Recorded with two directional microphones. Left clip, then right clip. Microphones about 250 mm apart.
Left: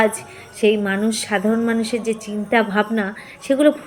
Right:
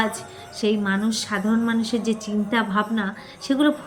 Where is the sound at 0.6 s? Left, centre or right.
Centre.